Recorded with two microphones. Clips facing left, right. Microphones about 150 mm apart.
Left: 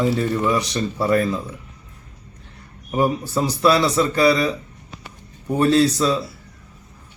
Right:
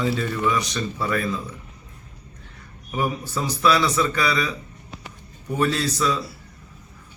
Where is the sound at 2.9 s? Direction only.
35° left (ahead or behind).